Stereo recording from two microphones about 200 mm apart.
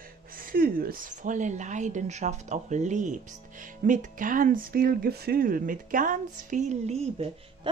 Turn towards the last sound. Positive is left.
turn(degrees=-30)  # may be behind; listen again after turning